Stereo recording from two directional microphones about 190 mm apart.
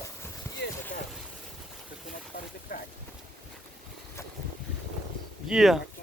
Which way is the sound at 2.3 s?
50° left (ahead or behind).